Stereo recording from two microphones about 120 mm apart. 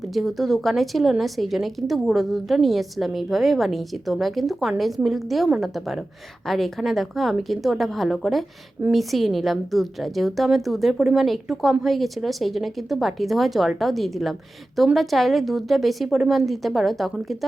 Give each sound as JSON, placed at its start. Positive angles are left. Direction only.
{"t": 0.1, "sound": "a woman's voice", "side_deg": 0}